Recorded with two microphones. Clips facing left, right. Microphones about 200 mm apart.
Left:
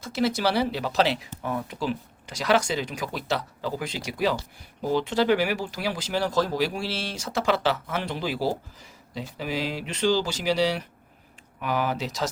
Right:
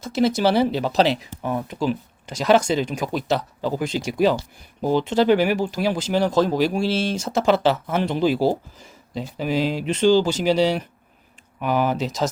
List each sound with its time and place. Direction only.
0.0 s speech: 20° right (ahead or behind)
9.4 s speech: 20° right (ahead or behind)